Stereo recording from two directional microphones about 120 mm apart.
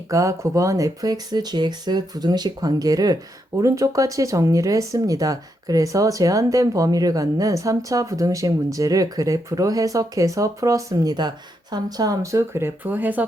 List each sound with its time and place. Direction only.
0.1 s speech: 25° right (ahead or behind)